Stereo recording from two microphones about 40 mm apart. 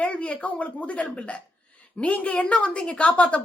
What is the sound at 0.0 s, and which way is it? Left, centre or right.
A woman's voice, left.